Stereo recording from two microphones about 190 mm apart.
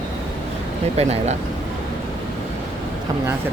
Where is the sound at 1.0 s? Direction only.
35° right (ahead or behind).